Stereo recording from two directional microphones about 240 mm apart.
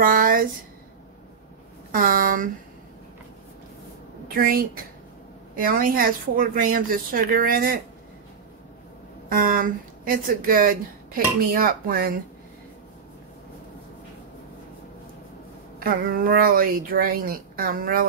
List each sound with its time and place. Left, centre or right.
0.0 s speech: right
1.9 s speech: right
4.4 s speech: right
9.3 s speech: right
15.8 s speech: right